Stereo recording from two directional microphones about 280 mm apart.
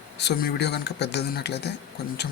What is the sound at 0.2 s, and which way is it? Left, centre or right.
Speech, left.